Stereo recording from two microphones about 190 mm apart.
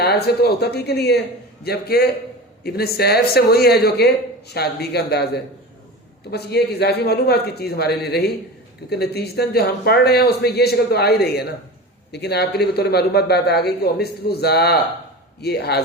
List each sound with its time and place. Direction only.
0.0 s a man's voice: 55° left (ahead or behind)